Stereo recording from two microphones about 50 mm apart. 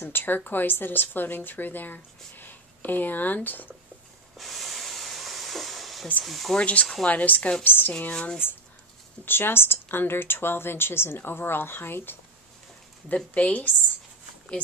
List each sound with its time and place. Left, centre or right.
0.0 s speech: left
4.4 s hiss: centre
6.2 s speech: centre
6.6 s a woman's voice: left
7.6 s speech: left
8.1 s a woman's voice: centre
9.2 s speech: left
13.1 s a woman's voice: left